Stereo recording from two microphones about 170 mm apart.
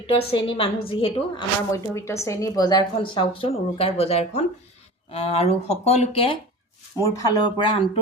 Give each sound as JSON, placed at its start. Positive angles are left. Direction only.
{"t": 0.1, "sound": "a woman's voice", "side_deg": 35}
{"t": 7.0, "sound": "speech", "side_deg": 20}